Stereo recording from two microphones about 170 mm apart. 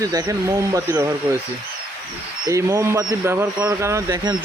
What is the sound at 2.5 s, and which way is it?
Speech, 20° right (ahead or behind).